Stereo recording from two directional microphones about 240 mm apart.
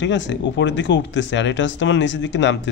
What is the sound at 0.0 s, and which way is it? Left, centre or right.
Speech, left.